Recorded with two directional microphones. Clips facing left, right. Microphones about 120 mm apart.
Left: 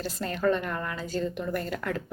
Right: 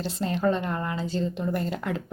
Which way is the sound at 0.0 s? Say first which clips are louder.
Right 2 dB; 20° right (ahead or behind).